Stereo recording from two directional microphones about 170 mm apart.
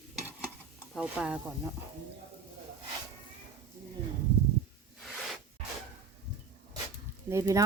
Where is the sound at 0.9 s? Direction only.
5° right (ahead or behind).